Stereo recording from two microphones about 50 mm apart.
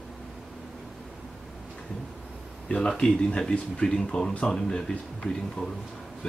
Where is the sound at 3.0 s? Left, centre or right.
Centre.